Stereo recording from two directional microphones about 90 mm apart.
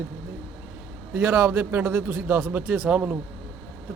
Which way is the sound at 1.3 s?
15° right (ahead or behind).